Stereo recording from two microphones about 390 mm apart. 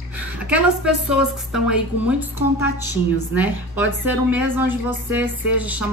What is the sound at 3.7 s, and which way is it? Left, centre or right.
Speech, left.